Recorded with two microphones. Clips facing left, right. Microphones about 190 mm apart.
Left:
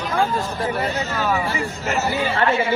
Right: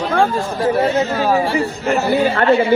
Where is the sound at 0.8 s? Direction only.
35° right (ahead or behind).